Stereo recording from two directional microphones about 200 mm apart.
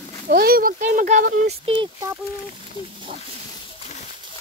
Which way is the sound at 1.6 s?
25° right (ahead or behind).